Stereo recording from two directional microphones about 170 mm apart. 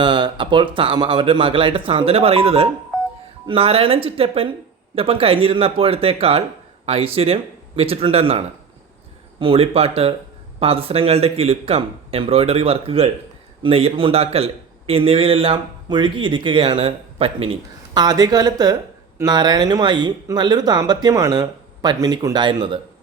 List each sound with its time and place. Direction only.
0.0 s a man's voice: 25° right (ahead or behind)